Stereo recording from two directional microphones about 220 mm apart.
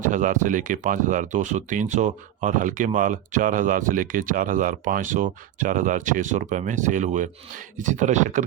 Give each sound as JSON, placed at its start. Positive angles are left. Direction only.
{"t": 0.0, "sound": "speech", "side_deg": -35}